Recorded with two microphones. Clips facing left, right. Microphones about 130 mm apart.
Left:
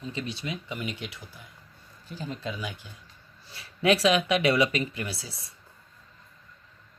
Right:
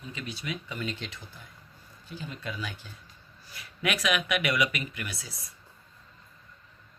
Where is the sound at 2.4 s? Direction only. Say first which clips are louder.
Left 2 dB; 20° left (ahead or behind).